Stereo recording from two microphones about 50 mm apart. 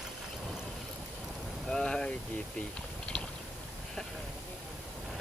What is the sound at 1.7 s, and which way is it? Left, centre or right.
Vehicle, centre.